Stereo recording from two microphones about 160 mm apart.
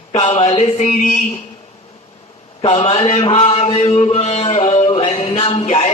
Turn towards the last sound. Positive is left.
turn(degrees=45)  # may be behind; listen again after turning